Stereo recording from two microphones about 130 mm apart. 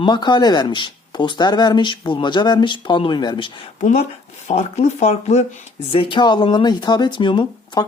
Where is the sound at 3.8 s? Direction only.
75° left (ahead or behind).